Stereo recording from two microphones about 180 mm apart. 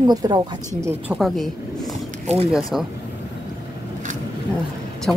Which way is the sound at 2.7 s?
Centre (ahead or behind).